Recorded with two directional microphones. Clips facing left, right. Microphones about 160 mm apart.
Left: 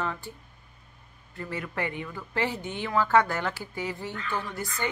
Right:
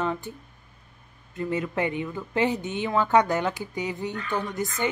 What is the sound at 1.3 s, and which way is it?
A woman's voice, 20° right (ahead or behind).